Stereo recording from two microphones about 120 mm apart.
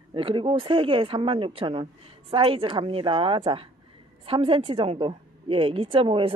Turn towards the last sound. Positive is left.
turn(degrees=-50)  # may be behind; listen again after turning